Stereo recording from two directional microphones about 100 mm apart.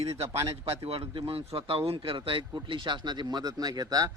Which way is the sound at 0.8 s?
65° right (ahead or behind).